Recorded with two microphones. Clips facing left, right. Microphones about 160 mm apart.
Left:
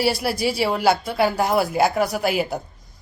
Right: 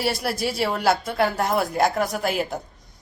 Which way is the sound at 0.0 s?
Centre (ahead or behind).